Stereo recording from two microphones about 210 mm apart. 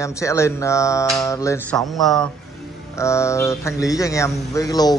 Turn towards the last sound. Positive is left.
turn(degrees=20)  # may be behind; listen again after turning